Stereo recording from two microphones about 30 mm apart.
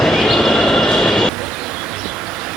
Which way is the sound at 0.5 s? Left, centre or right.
Centre.